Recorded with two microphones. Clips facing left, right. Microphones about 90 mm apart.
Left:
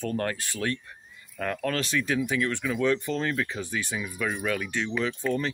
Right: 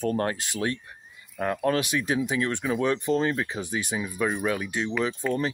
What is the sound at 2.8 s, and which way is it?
Speech, 20° right (ahead or behind).